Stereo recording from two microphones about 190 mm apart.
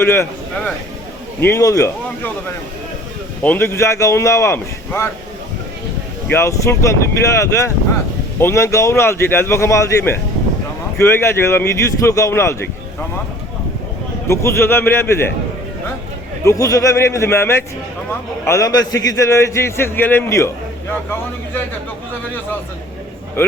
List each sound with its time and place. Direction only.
0.0 s a man's voice: 10° left (ahead or behind)
3.4 s a man's voice: 10° left (ahead or behind)
6.3 s a man's voice: 15° left (ahead or behind)
14.3 s a man's voice: 15° left (ahead or behind)
16.4 s a man's voice: 15° left (ahead or behind)